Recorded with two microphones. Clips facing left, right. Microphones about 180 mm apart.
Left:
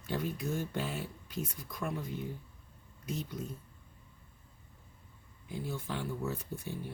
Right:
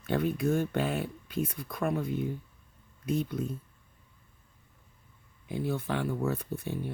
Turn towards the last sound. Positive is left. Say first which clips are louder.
# right 6 dB
turn(degrees=-60)  # may be behind; listen again after turning